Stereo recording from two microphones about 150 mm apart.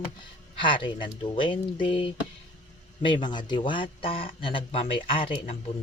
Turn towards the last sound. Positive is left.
turn(degrees=40)  # may be behind; listen again after turning